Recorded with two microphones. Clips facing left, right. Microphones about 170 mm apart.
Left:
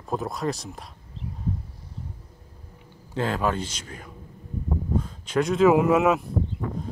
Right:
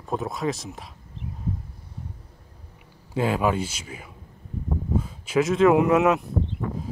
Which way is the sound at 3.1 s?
10° right (ahead or behind).